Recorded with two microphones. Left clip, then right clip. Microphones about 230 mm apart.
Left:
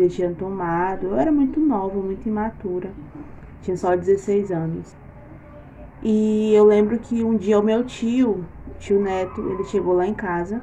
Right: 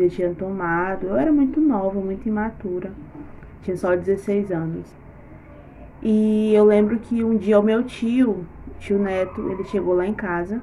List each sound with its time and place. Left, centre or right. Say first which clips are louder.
0.0 s speech: left 1 dB; centre
6.0 s speech: even; centre